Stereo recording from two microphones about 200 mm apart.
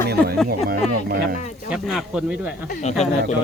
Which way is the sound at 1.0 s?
50° right (ahead or behind).